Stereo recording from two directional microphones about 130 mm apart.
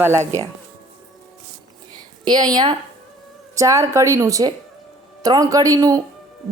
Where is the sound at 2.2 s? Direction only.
30° right (ahead or behind).